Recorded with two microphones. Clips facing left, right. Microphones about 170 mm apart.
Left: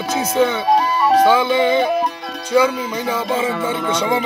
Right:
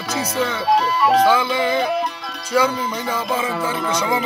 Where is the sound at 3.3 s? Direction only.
25° left (ahead or behind).